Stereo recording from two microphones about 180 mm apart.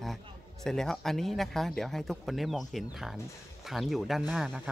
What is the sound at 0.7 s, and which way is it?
Speech, centre (ahead or behind).